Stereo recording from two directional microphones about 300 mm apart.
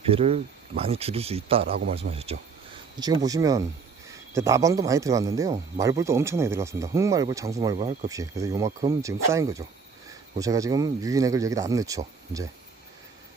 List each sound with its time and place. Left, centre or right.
0.1 s speech: centre